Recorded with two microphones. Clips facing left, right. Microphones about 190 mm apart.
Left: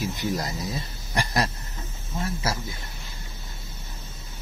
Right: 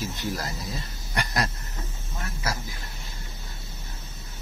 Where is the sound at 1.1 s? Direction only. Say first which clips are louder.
Left 3 dB; 25° left (ahead or behind).